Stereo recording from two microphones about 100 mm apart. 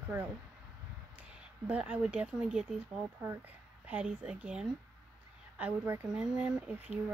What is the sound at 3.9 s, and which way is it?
Speech, 15° right (ahead or behind).